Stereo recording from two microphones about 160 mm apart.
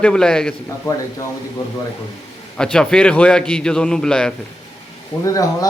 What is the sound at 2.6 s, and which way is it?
A man's voice, 5° left (ahead or behind).